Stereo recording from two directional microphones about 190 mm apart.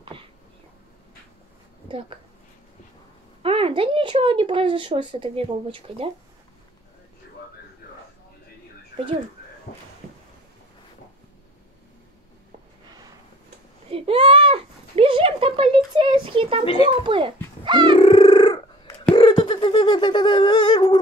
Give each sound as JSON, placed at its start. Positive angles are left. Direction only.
{"t": 1.9, "sound": "speech", "side_deg": -25}
{"t": 3.4, "sound": "speech", "side_deg": -30}
{"t": 13.8, "sound": "a sound", "side_deg": -30}
{"t": 16.6, "sound": "a child's voice", "side_deg": 30}
{"t": 17.0, "sound": "speech", "side_deg": -25}
{"t": 17.9, "sound": "a sound", "side_deg": 30}